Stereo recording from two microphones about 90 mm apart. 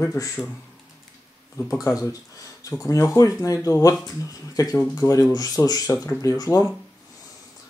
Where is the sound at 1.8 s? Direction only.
40° left (ahead or behind).